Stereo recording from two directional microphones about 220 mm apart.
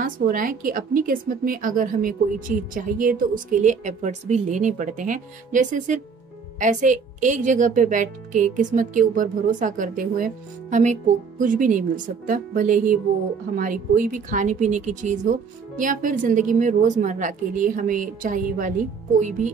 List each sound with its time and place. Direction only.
0.0 s a woman's voice: 40° right (ahead or behind)